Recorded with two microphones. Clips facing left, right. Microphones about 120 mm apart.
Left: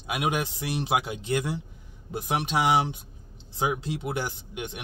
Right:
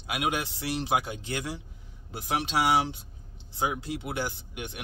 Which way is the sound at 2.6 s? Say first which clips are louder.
Left 1 dB; 20° left (ahead or behind).